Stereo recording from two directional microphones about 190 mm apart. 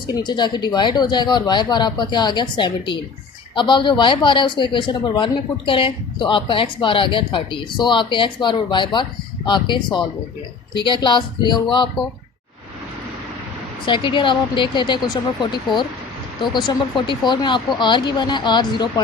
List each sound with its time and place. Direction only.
0.1 s speech: 25° left (ahead or behind)
13.8 s speech: 25° left (ahead or behind)